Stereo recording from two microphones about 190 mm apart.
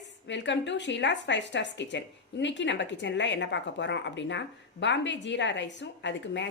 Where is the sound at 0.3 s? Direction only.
70° left (ahead or behind).